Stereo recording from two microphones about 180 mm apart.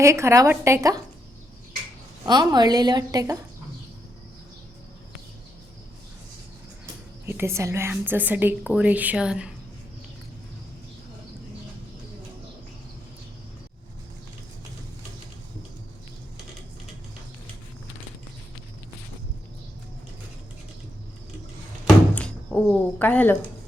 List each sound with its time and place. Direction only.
0.0 s a woman's voice: 15° right (ahead or behind)
2.2 s a woman's voice: 25° right (ahead or behind)
7.3 s a woman's voice: 15° right (ahead or behind)
22.1 s speech: 5° left (ahead or behind)